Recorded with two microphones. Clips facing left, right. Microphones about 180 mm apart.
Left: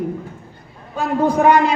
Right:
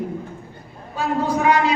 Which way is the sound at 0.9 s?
50° left (ahead or behind).